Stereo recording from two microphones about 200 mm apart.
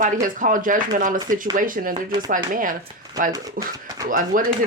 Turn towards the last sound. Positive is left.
turn(degrees=-40)  # may be behind; listen again after turning